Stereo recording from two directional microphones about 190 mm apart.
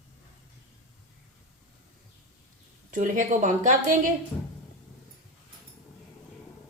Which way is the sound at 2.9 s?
45° right (ahead or behind).